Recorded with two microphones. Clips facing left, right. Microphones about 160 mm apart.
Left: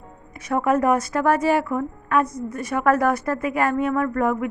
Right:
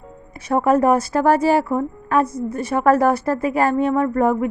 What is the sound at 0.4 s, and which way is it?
A woman's voice, 30° right (ahead or behind).